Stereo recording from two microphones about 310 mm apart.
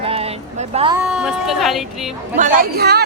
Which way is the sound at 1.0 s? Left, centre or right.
Centre.